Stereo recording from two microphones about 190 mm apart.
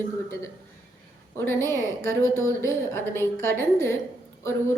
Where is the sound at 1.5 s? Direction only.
15° left (ahead or behind).